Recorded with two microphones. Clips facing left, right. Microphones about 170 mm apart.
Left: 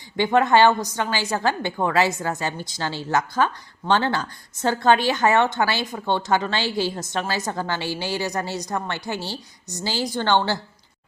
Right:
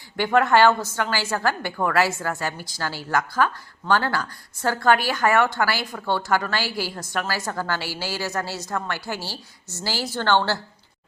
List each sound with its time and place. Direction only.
0.2 s a woman's voice: 20° left (ahead or behind)